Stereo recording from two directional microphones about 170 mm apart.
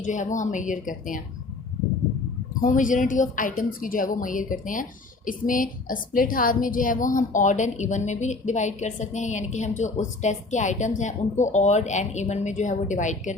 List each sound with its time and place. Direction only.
0.0 s a woman's voice: 45° left (ahead or behind)
2.6 s a woman's voice: 50° left (ahead or behind)